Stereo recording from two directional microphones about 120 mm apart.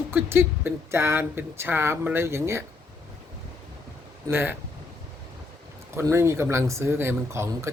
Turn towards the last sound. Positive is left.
turn(degrees=-25)  # may be behind; listen again after turning